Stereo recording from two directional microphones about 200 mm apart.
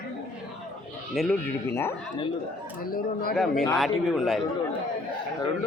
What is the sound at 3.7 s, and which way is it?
Speech, centre (ahead or behind).